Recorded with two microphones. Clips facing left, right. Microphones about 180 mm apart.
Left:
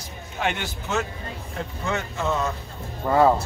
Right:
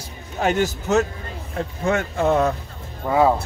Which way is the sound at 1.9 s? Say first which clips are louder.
Right 7 dB; 55° right (ahead or behind).